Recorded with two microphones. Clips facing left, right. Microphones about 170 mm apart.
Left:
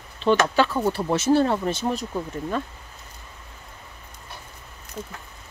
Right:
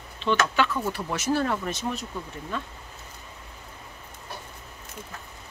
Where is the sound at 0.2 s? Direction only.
35° left (ahead or behind).